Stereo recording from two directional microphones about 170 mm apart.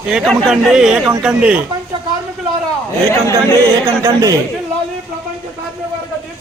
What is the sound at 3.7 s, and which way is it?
Speech, 20° right (ahead or behind).